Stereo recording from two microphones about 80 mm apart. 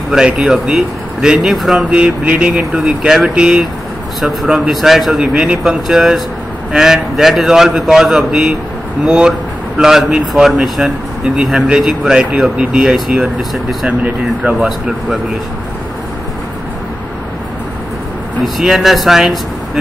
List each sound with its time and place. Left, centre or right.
0.1 s speech: centre
2.0 s speech: centre
2.7 s speech: centre
4.2 s speech: centre
13.8 s speech: centre
18.4 s speech: centre